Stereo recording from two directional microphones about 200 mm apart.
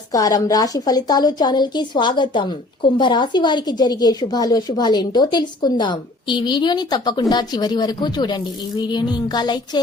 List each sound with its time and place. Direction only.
0.1 s a woman's voice: 20° left (ahead or behind)